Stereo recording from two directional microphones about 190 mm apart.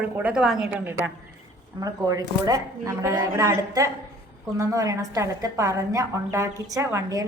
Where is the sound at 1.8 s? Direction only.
20° right (ahead or behind).